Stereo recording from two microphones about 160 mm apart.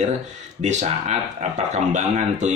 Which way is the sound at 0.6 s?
45° right (ahead or behind).